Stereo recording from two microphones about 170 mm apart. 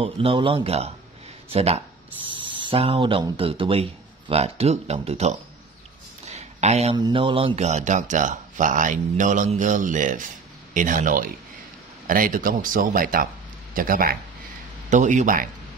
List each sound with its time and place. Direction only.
0.0 s speech: 30° right (ahead or behind)
6.2 s a sound: 40° right (ahead or behind)
7.0 s speech: 30° right (ahead or behind); by 14.1 s 55° right (ahead or behind)
14.9 s speech: 45° right (ahead or behind)